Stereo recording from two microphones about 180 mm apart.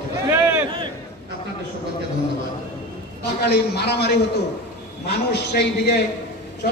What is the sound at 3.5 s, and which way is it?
A man's voice, 65° left (ahead or behind).